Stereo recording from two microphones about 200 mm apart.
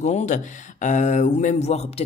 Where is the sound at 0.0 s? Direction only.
35° left (ahead or behind).